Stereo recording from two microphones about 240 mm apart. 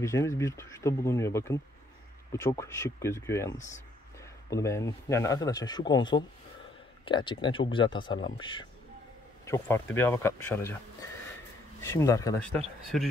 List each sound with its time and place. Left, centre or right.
0.0 s a man's voice: centre
12.9 s speech: centre